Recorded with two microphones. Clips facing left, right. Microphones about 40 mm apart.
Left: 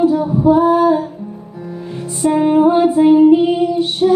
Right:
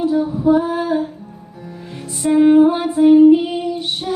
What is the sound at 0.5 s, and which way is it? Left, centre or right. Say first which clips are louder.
Female singing: left 6 dB; centre.